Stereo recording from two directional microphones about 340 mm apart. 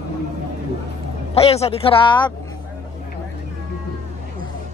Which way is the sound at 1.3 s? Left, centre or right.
Centre.